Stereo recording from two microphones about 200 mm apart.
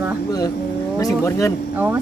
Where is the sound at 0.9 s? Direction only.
15° left (ahead or behind).